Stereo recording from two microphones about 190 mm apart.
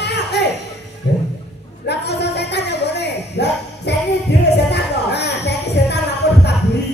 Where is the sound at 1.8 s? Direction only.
60° left (ahead or behind).